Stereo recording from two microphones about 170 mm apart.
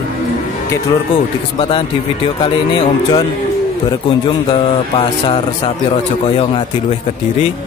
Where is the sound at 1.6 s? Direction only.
30° left (ahead or behind).